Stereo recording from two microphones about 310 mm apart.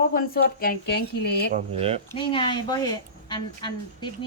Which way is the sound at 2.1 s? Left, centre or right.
Centre.